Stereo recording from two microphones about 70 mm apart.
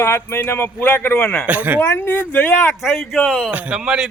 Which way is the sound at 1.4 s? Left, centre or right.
Right.